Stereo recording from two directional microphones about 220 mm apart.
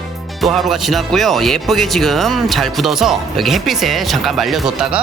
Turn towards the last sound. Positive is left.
turn(degrees=0)  # may be behind; listen again after turning